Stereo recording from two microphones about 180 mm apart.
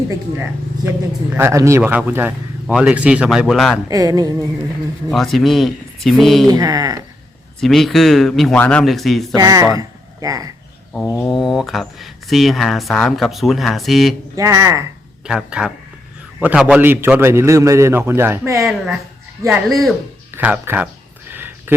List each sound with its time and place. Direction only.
0.9 s speech: 10° right (ahead or behind)
3.8 s speech: 20° right (ahead or behind)
5.1 s speech: centre (ahead or behind)
6.5 s speech: 20° right (ahead or behind)
7.6 s speech: centre (ahead or behind)
9.3 s speech: 20° right (ahead or behind)
11.0 s a sound: 10° left (ahead or behind)
11.3 s speech: centre (ahead or behind)
14.3 s speech: 15° right (ahead or behind)
15.3 s speech: 5° right (ahead or behind)
20.3 s a sound: 10° right (ahead or behind)